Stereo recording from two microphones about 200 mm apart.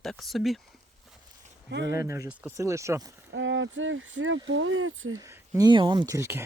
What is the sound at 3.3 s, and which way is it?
Speech, 70° right (ahead or behind).